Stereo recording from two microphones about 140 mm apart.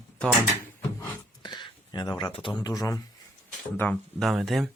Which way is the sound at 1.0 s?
30° left (ahead or behind).